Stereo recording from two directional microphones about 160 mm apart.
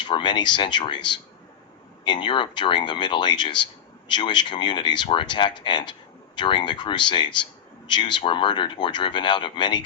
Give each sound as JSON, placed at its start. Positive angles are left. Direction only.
{"t": 0.0, "sound": "speech", "side_deg": 30}